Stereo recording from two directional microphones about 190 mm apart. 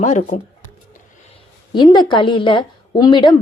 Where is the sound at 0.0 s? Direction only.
40° left (ahead or behind).